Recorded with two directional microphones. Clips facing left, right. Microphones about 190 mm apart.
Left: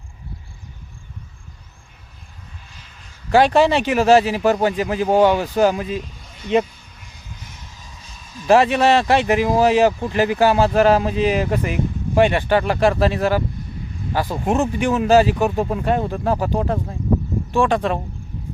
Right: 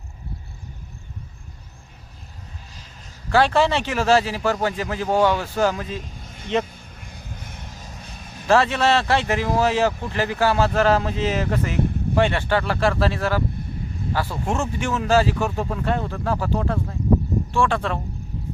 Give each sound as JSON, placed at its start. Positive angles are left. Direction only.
{"t": 3.2, "sound": "speech", "side_deg": 15}
{"t": 6.7, "sound": "vehicle", "side_deg": -50}
{"t": 8.4, "sound": "speech", "side_deg": 15}